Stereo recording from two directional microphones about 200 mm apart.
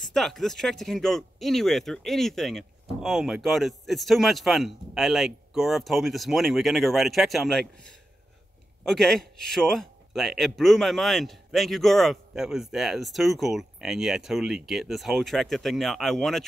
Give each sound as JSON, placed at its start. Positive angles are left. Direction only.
{"t": 0.0, "sound": "speech", "side_deg": 0}